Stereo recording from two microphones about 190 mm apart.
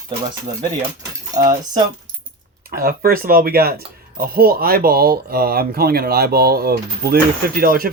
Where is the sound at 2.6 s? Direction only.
50° right (ahead or behind).